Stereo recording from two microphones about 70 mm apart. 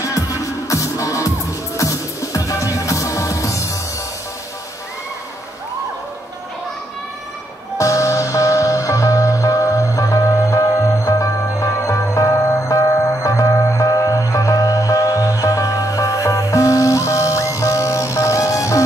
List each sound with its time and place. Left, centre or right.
0.0 s music: left
7.7 s music: left